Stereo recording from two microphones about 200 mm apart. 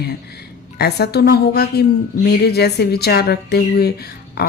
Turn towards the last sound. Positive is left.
turn(degrees=50)  # may be behind; listen again after turning